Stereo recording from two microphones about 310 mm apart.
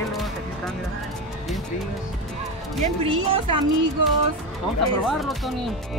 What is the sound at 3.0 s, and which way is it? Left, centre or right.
Speech, centre.